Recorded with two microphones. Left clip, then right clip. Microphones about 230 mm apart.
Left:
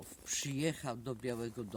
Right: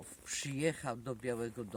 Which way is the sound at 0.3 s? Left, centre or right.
Centre.